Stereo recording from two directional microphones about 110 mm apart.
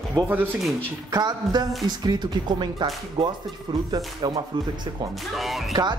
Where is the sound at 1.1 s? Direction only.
40° right (ahead or behind).